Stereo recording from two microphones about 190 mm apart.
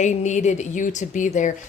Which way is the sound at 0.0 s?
40° left (ahead or behind).